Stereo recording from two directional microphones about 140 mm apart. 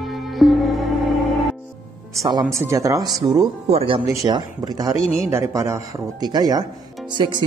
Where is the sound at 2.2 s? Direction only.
25° right (ahead or behind).